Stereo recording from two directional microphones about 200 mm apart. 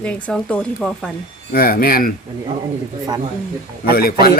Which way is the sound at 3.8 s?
50° left (ahead or behind).